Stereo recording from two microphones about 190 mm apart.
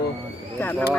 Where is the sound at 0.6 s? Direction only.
10° left (ahead or behind).